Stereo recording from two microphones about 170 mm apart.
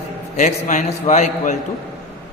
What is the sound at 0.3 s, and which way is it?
A man's voice, 45° left (ahead or behind).